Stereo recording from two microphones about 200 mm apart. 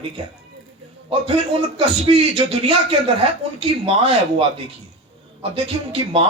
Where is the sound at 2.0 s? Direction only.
25° right (ahead or behind).